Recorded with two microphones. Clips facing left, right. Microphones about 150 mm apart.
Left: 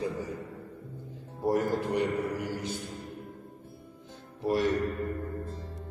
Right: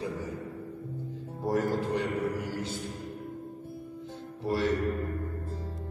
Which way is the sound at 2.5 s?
15° left (ahead or behind).